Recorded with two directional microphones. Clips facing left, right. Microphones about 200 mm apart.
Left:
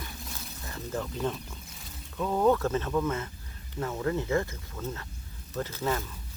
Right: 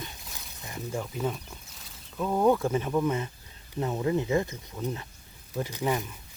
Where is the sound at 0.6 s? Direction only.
15° right (ahead or behind).